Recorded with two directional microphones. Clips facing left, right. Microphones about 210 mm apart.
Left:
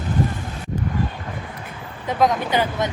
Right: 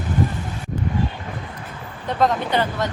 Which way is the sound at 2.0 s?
Centre (ahead or behind).